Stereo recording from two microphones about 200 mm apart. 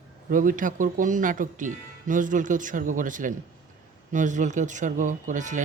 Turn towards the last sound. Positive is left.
turn(degrees=-40)  # may be behind; listen again after turning